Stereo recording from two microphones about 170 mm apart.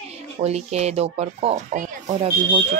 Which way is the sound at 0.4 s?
40° right (ahead or behind).